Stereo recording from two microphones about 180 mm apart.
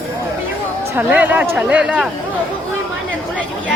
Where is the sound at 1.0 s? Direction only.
10° right (ahead or behind).